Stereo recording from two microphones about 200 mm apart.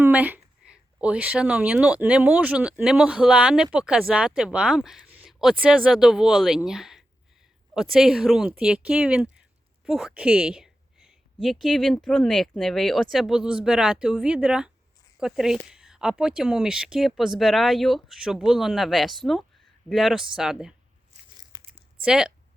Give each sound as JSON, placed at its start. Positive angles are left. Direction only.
{"t": 0.0, "sound": "speech", "side_deg": -10}
{"t": 21.1, "sound": "biting", "side_deg": -35}
{"t": 21.5, "sound": "a sound", "side_deg": -15}
{"t": 22.0, "sound": "a woman's voice", "side_deg": -5}